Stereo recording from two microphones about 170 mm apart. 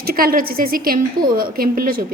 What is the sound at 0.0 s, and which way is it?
A woman's voice, 60° right (ahead or behind).